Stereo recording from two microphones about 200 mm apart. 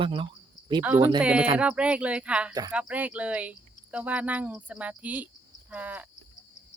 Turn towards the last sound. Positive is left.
turn(degrees=-10)  # may be behind; listen again after turning